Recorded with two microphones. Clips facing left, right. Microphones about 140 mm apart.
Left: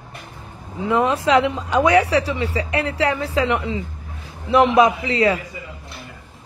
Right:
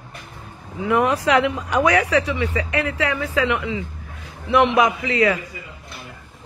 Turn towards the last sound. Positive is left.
turn(degrees=25)  # may be behind; listen again after turning